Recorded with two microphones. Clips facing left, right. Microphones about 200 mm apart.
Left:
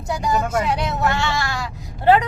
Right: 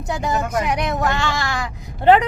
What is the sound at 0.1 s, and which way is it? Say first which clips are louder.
Speech: left 1 dB; 20° right (ahead or behind).